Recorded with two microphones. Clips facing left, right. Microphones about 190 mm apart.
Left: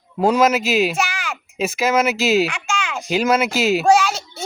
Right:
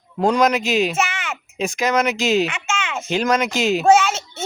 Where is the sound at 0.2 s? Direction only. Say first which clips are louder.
Left 1 dB; 5° left (ahead or behind).